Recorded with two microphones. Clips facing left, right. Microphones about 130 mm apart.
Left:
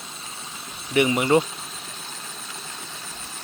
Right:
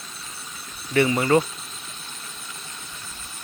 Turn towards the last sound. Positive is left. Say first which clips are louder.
# left 2 dB
turn(degrees=25)  # may be behind; listen again after turning